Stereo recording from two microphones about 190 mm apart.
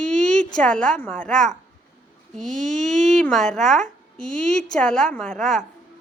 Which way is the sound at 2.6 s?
40° right (ahead or behind).